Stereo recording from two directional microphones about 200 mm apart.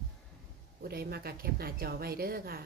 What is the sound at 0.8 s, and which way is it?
A woman's voice, 50° right (ahead or behind).